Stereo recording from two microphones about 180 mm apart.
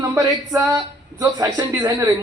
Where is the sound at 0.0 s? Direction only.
20° right (ahead or behind).